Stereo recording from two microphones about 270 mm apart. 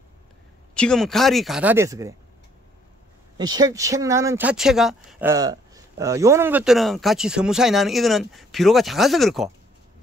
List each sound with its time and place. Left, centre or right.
0.7 s speech: centre
3.3 s speech: centre
5.3 s speech: centre